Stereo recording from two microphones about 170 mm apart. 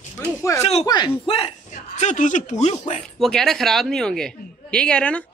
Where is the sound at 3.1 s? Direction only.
Centre (ahead or behind).